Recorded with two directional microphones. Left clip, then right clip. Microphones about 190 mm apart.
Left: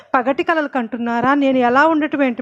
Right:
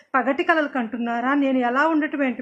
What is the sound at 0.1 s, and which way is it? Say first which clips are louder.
A woman's voice: left 3 dB; 40° left (ahead or behind).